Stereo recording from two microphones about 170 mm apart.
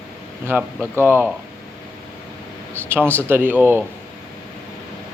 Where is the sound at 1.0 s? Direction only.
10° right (ahead or behind).